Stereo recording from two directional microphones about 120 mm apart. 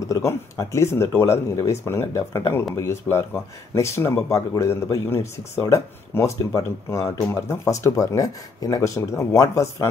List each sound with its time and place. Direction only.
0.1 s speech: 25° left (ahead or behind)